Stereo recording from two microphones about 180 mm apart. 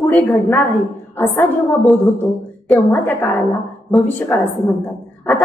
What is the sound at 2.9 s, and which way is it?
A woman's voice, 10° left (ahead or behind).